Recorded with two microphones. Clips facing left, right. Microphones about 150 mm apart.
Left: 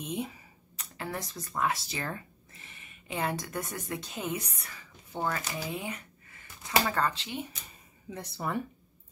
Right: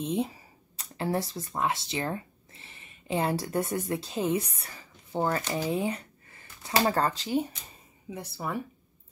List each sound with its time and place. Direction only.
0.0 s speech: 30° right (ahead or behind)
8.1 s speech: 5° right (ahead or behind)